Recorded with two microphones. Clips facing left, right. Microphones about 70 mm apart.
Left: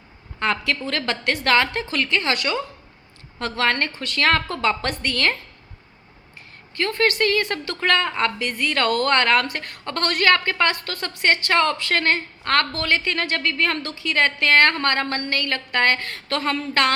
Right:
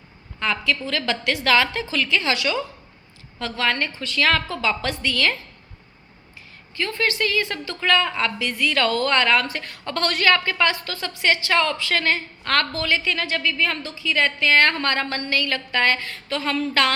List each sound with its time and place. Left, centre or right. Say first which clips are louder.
0.3 s a woman's voice: left 1 dB; left
6.7 s a woman's voice: left 3 dB; left
12.4 s a woman's voice: left 2 dB; left
12.7 s a woman's voice: left 1 dB; left
14.7 s a woman's voice: left 1 dB; left